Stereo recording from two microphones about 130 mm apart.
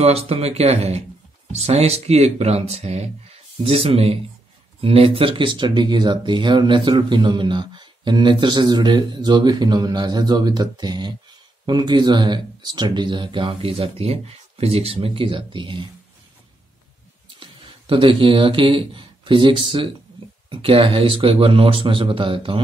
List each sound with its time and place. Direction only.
0.0 s speech: 50° right (ahead or behind)
17.4 s speech: 40° right (ahead or behind)